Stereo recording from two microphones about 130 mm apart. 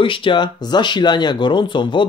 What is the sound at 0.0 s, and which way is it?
Speech, 40° left (ahead or behind).